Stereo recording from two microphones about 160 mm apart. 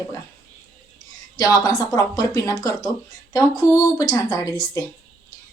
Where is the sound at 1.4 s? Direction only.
20° left (ahead or behind).